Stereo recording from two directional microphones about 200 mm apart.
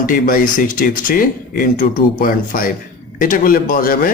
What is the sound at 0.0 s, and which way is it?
Speech, 45° left (ahead or behind).